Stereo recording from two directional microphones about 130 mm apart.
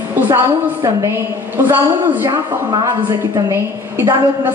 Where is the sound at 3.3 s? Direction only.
25° right (ahead or behind).